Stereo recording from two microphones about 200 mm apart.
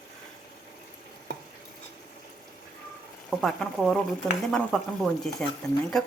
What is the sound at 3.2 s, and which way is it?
Speech, centre (ahead or behind).